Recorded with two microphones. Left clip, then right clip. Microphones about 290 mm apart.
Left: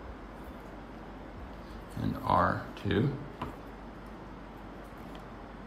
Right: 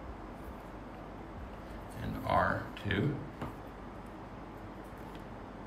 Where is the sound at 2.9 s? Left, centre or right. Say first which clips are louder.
Left 4 dB; centre.